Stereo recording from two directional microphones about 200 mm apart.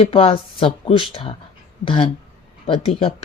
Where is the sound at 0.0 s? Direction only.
30° left (ahead or behind).